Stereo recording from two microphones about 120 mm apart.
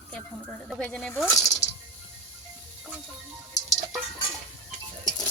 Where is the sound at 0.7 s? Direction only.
5° left (ahead or behind).